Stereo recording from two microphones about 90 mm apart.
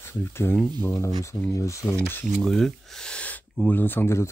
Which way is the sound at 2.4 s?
5° left (ahead or behind).